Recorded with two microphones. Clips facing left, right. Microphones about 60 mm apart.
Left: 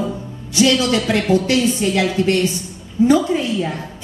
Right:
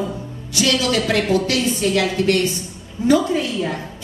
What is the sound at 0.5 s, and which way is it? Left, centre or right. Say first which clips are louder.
A woman's voice: left 3 dB; left.